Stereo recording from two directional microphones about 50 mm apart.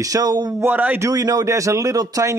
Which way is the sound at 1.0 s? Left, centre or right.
Right.